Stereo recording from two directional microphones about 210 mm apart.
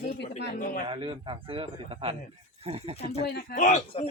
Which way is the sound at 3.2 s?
50° left (ahead or behind).